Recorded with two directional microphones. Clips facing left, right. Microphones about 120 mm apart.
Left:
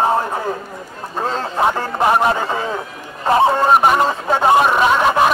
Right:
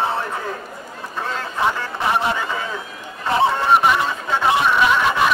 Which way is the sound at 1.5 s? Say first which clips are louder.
Left 4 dB; 45° left (ahead or behind).